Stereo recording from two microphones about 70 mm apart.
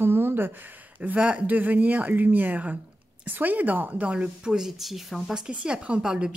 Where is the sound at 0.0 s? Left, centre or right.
Right; by 5.4 s centre.